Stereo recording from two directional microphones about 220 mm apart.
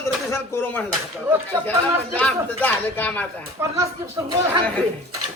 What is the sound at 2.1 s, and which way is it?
A man's voice, 5° left (ahead or behind).